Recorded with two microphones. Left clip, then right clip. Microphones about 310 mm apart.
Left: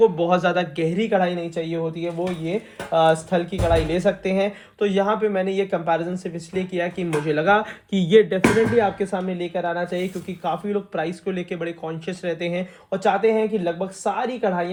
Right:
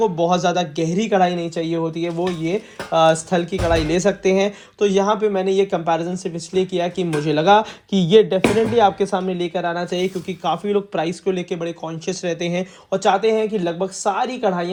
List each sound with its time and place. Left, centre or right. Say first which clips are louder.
0.0 s speech: even; centre